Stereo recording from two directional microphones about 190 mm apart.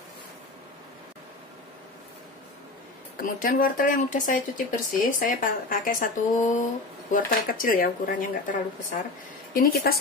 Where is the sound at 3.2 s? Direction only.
45° left (ahead or behind).